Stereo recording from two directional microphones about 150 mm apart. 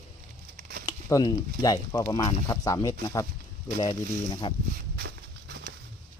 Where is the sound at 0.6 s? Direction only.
85° right.